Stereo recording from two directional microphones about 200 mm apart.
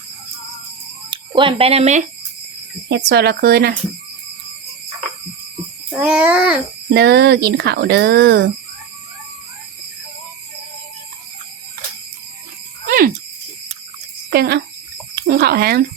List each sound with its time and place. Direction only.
1.1 s speech: 25° right (ahead or behind)
2.9 s speech: 55° right (ahead or behind)
6.0 s speech: 5° right (ahead or behind)
6.9 s speech: 55° right (ahead or behind)
12.9 s a sound: 45° right (ahead or behind)
14.3 s speech: 50° right (ahead or behind)